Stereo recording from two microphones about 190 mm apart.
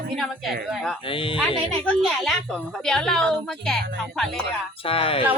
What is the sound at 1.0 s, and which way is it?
Speech, 25° left (ahead or behind).